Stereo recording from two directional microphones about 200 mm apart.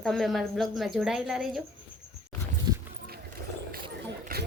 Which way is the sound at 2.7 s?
20° right (ahead or behind).